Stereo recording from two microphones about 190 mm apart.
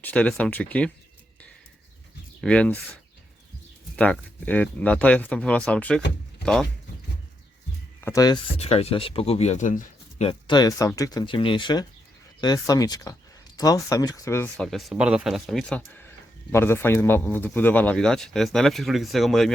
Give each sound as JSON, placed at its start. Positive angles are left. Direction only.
{"t": 0.0, "sound": "speech", "side_deg": 5}
{"t": 2.4, "sound": "speech", "side_deg": 5}
{"t": 3.9, "sound": "speech", "side_deg": 5}
{"t": 8.0, "sound": "speech", "side_deg": 20}
{"t": 8.5, "sound": "speech", "side_deg": 30}
{"t": 14.5, "sound": "speech", "side_deg": 0}